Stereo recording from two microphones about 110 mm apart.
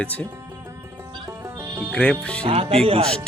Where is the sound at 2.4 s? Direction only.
60° right (ahead or behind).